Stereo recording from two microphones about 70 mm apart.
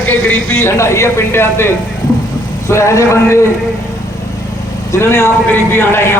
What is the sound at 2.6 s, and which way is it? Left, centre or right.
Speech, left.